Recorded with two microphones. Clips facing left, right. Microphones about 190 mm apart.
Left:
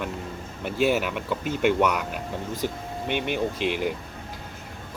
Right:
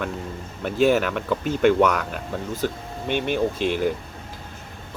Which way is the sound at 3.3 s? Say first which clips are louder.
Right 3 dB; 45° right (ahead or behind).